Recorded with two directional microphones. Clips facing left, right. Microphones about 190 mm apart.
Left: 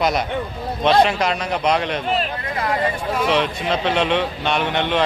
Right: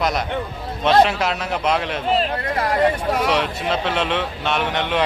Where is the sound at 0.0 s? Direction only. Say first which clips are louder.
Left 2 dB; centre (ahead or behind).